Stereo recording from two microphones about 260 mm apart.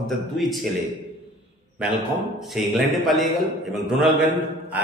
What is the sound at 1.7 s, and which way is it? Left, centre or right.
A man's voice, centre.